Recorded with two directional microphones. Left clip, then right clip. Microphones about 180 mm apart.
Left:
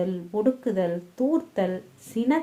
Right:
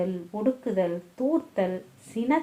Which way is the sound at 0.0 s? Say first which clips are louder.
Left 3 dB; 40° left (ahead or behind).